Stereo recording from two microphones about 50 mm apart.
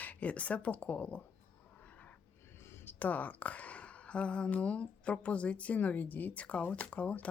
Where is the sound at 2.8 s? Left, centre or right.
Left.